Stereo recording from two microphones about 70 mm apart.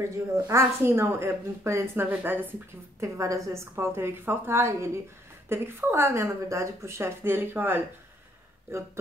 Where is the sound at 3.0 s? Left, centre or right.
Right.